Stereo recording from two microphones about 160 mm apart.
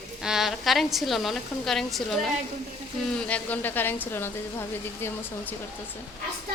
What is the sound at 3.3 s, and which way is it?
A woman's voice, 10° left (ahead or behind).